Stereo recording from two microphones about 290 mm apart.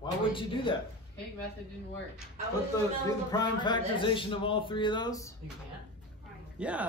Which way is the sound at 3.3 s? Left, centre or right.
Centre.